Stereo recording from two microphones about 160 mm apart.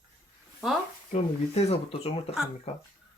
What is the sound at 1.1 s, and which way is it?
Speech, 40° left (ahead or behind).